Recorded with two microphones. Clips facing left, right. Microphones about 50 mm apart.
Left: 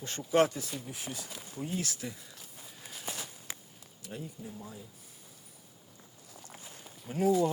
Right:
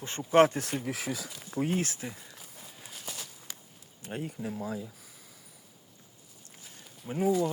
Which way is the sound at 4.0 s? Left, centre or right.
Right.